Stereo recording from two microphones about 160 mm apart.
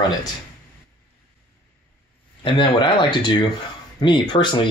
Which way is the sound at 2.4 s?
30° left (ahead or behind).